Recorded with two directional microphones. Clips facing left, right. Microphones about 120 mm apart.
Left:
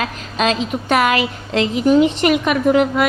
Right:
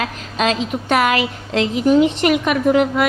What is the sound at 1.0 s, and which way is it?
A woman's voice, 15° left (ahead or behind).